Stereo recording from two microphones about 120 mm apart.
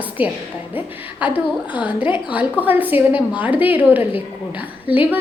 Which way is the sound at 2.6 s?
15° right (ahead or behind).